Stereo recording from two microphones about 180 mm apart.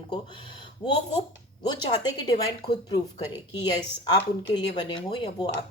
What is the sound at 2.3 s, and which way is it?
Speech, 25° left (ahead or behind).